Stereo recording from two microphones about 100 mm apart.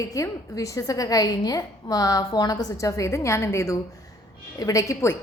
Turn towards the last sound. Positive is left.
turn(degrees=30)  # may be behind; listen again after turning